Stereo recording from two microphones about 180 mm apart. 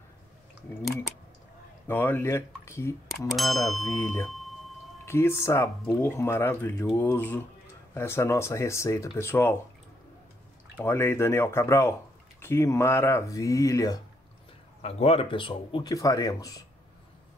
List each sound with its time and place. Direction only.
1.9 s speech: 10° left (ahead or behind)
3.3 s speech: centre (ahead or behind)
3.9 s speech: 15° left (ahead or behind)
4.3 s wind chime: centre (ahead or behind)
5.0 s speech: 15° left (ahead or behind)
10.8 s speech: 15° left (ahead or behind)
14.8 s speech: 35° left (ahead or behind); by 16.6 s 20° left (ahead or behind)